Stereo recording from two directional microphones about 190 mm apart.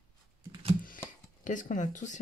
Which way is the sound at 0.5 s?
25° right (ahead or behind).